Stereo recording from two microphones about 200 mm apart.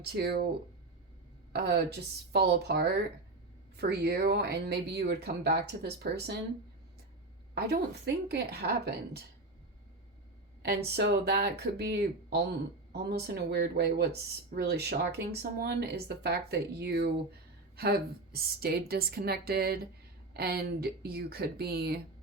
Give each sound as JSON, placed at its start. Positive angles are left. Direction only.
{"t": 0.0, "sound": "speech", "side_deg": -55}
{"t": 1.5, "sound": "speech", "side_deg": -55}
{"t": 7.5, "sound": "speech", "side_deg": -55}
{"t": 10.8, "sound": "speech", "side_deg": -55}